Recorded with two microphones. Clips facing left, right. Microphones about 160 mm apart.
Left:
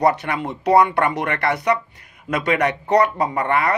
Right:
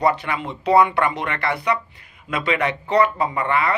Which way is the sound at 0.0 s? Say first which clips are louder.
Left 2 dB; 45° left (ahead or behind).